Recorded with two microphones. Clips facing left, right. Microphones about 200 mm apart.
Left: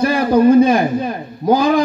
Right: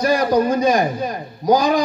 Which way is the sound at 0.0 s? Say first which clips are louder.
Left 4 dB; 55° left (ahead or behind).